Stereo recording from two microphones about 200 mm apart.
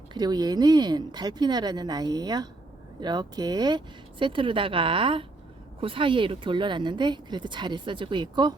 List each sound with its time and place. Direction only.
0.1 s speech: 20° right (ahead or behind)